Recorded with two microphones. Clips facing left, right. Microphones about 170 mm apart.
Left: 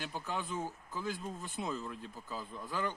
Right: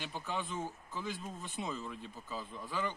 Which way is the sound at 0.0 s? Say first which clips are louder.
Even; 5° left (ahead or behind).